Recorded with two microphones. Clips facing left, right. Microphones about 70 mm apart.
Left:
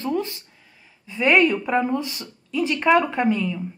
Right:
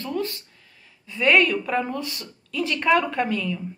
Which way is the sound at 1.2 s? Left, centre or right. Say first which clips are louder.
Left 1 dB; centre.